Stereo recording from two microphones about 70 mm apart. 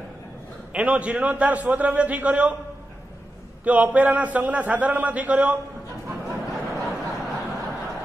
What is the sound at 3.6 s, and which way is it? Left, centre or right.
A man's voice, right.